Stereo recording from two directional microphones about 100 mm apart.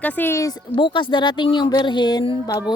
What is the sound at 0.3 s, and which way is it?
Speech, 35° left (ahead or behind).